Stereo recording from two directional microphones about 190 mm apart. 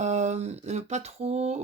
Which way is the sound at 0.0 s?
40° right (ahead or behind).